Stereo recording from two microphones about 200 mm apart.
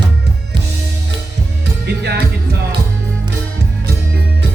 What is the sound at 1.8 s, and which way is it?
Music, 55° right (ahead or behind).